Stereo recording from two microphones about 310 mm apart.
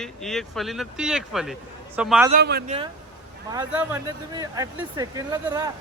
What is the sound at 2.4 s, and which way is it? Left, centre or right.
Speech, right.